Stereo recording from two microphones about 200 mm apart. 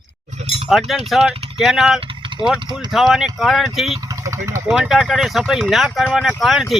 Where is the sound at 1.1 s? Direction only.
5° right (ahead or behind).